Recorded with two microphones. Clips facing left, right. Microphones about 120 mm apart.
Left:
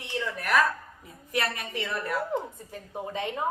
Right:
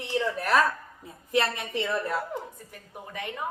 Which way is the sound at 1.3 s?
25° right (ahead or behind).